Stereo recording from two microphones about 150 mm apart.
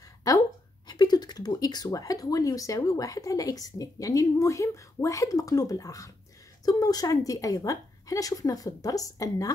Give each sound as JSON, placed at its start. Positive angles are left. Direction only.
{"t": 0.8, "sound": "speech", "side_deg": 30}